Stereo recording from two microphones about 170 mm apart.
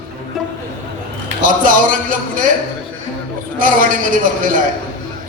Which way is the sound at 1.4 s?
55° right (ahead or behind).